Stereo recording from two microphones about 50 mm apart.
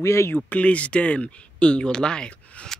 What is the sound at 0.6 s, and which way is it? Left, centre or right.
Speech, left.